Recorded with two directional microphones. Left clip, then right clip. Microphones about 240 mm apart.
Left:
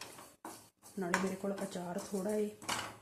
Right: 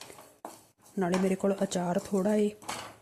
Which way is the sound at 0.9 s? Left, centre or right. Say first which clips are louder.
Right 7 dB; right.